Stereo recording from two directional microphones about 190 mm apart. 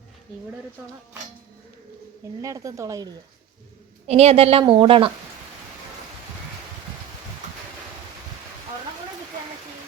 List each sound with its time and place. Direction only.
2.4 s speech: 15° right (ahead or behind)
4.0 s a woman's voice: 35° right (ahead or behind)